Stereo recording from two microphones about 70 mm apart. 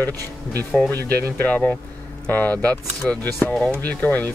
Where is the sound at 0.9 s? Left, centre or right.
Left.